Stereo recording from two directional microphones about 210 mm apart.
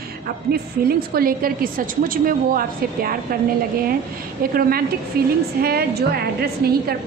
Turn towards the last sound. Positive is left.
turn(degrees=-45)  # may be behind; listen again after turning